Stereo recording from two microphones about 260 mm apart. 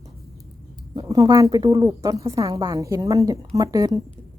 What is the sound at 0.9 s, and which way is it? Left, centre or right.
A woman's voice, centre.